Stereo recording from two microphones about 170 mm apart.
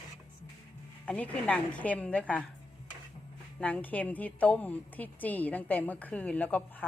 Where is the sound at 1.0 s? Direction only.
10° left (ahead or behind).